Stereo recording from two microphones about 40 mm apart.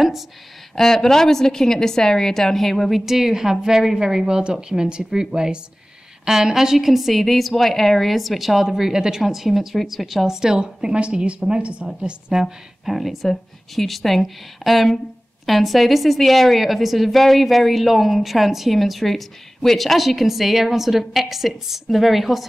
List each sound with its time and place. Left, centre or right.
0.7 s a woman's voice: centre
3.1 s a woman's voice: centre
11.0 s speech: right
12.0 s a woman's voice: centre